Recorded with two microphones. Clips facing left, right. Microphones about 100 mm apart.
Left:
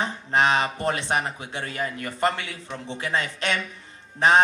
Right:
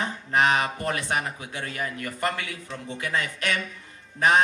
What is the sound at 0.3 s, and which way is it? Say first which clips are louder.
A man's voice: left 1 dB; 25° left (ahead or behind).